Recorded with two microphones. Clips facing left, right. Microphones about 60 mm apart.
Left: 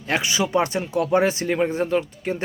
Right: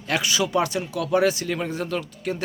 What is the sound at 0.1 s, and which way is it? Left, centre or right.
Speech, left.